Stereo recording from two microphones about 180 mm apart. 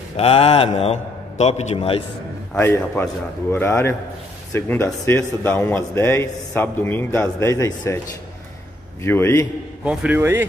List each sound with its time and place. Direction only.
0.2 s speech: 30° left (ahead or behind)
2.5 s speech: 10° left (ahead or behind)
9.0 s speech: 10° left (ahead or behind)
9.8 s a man's voice: 10° right (ahead or behind)